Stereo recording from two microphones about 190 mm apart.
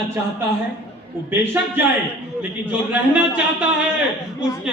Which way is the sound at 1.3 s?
10° right (ahead or behind).